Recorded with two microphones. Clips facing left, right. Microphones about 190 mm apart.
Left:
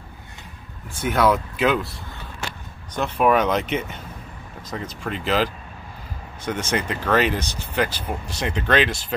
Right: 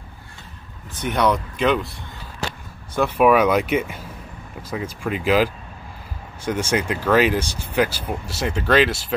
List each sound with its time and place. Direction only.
1.0 s speech: 5° left (ahead or behind)
2.4 s a sound: 35° right (ahead or behind)
2.9 s speech: 10° right (ahead or behind)